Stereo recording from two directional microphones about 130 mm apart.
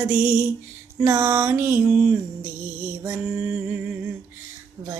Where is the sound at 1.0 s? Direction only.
20° right (ahead or behind).